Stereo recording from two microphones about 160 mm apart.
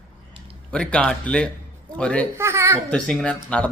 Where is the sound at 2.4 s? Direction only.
15° right (ahead or behind).